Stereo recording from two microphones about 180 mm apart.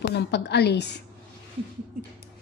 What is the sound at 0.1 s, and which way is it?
Speech, 70° left (ahead or behind).